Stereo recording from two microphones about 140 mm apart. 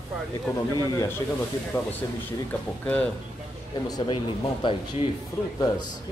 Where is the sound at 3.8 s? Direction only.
30° left (ahead or behind).